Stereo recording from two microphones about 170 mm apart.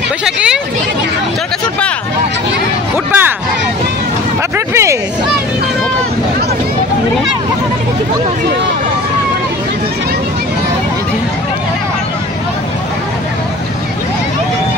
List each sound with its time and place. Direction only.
0.2 s speech: 5° right (ahead or behind)
3.1 s a sound: 10° right (ahead or behind)
4.6 s speech: 15° right (ahead or behind)